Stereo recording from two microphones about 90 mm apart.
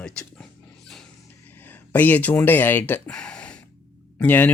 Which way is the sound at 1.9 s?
20° left (ahead or behind).